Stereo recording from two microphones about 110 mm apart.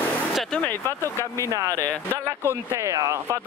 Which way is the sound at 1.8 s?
15° left (ahead or behind).